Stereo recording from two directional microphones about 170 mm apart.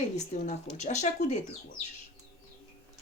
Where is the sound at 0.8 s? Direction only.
45° left (ahead or behind).